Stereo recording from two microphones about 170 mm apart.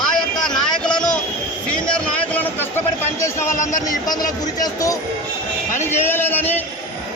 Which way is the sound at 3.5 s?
45° left (ahead or behind).